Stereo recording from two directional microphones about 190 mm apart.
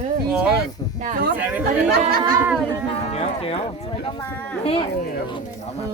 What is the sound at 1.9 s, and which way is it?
Speech, 55° right (ahead or behind).